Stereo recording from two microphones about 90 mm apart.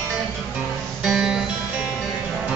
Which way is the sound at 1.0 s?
5° right (ahead or behind).